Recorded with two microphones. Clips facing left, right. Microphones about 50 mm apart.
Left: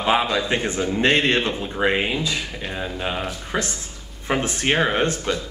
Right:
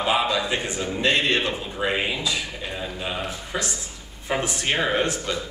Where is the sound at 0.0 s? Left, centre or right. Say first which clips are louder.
Left 2 dB; left.